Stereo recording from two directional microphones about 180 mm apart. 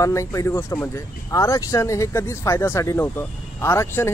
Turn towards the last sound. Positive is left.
turn(degrees=15)  # may be behind; listen again after turning